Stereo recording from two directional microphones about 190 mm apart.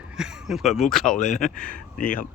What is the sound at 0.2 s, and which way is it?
Speech, 5° right (ahead or behind).